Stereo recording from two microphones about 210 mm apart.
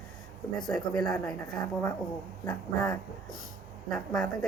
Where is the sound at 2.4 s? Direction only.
20° left (ahead or behind).